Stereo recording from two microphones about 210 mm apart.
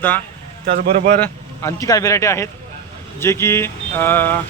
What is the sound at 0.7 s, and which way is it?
Speech, 40° right (ahead or behind).